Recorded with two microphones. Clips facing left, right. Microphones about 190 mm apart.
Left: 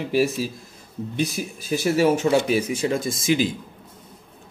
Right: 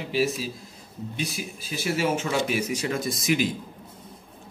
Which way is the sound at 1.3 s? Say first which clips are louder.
Left 7 dB; 45° left (ahead or behind).